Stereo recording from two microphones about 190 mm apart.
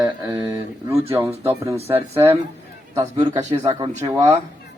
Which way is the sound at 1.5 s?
15° right (ahead or behind).